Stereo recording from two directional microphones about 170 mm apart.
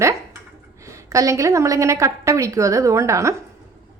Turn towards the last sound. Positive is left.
turn(degrees=-15)  # may be behind; listen again after turning